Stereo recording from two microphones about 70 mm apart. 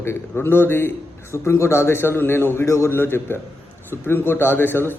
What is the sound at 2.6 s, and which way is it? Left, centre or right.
A man's voice, left.